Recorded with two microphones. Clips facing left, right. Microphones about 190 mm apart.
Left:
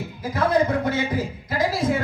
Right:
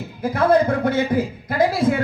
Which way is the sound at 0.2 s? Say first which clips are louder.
Right 4 dB; 55° right (ahead or behind).